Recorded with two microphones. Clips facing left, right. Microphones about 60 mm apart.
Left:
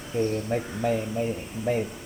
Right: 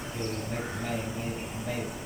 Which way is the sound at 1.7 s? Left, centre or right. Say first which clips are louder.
Left 10 dB; left.